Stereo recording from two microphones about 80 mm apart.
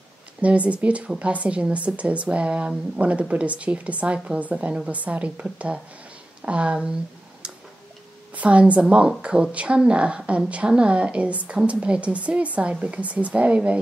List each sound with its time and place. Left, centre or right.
0.4 s speech: centre
7.4 s a sound: centre
8.4 s speech: centre